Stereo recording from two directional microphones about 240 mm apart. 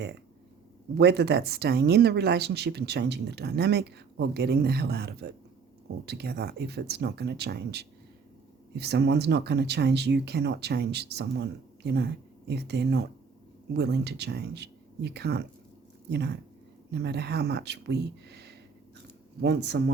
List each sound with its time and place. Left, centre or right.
0.9 s speech: right